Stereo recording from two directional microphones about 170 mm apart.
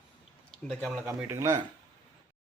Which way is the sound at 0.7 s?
Centre (ahead or behind).